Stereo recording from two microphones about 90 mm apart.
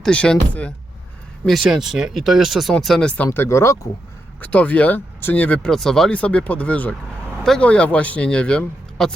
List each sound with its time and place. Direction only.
0.0 s speech: 10° left (ahead or behind)
1.5 s speech: centre (ahead or behind)
3.3 s speech: 30° left (ahead or behind)
4.4 s speech: 15° left (ahead or behind)
5.6 s speech: 5° left (ahead or behind)
6.1 s speech: 15° left (ahead or behind)